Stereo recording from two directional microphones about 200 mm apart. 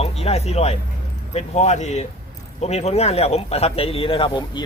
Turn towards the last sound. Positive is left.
turn(degrees=25)  # may be behind; listen again after turning